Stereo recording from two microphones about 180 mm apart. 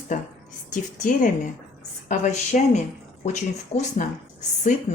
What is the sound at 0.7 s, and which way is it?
A woman's voice, 50° left (ahead or behind).